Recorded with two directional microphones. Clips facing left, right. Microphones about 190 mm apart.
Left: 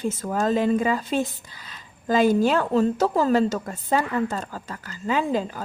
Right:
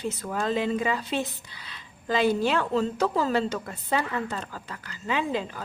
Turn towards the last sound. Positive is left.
turn(degrees=45)  # may be behind; listen again after turning